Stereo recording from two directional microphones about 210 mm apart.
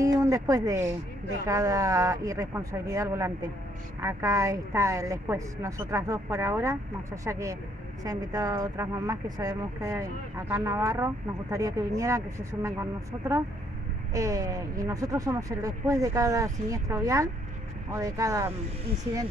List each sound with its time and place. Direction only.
0.0 s a woman's voice: 15° right (ahead or behind)
14.1 s a woman's voice: 15° right (ahead or behind)